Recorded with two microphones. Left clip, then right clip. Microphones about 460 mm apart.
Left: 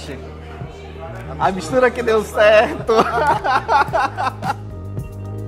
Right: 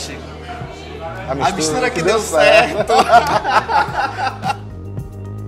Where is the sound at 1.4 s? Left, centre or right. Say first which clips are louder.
Left 2 dB; left.